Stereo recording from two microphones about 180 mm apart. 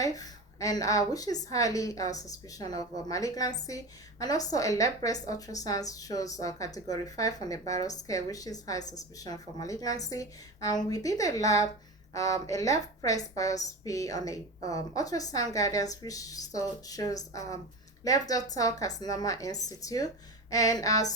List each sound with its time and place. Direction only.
0.0 s a woman's voice: 20° left (ahead or behind)